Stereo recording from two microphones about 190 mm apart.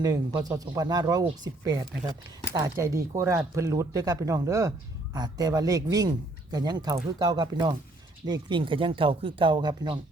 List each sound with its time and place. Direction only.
0.0 s speech: 20° right (ahead or behind)